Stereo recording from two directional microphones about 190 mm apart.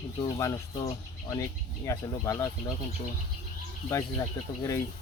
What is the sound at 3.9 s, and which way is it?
Speech, 15° left (ahead or behind).